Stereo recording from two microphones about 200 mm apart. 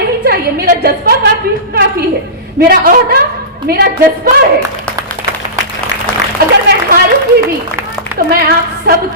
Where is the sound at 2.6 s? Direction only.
50° right (ahead or behind).